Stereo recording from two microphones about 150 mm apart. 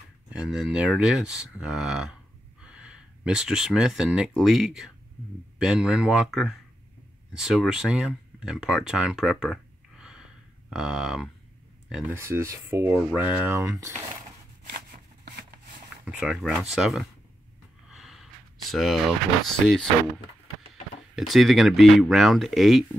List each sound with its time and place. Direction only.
0.3 s speech: 5° right (ahead or behind)
12.1 s rub: 15° right (ahead or behind)
16.1 s speech: 5° right (ahead or behind)
17.8 s gasp: centre (ahead or behind)
19.4 s speech: 5° left (ahead or behind)
21.3 s speech: centre (ahead or behind)